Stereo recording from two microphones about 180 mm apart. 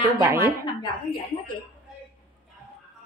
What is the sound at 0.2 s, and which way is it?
Speech, 15° right (ahead or behind).